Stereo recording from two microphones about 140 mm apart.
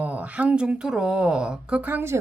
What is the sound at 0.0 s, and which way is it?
Speech, 10° right (ahead or behind).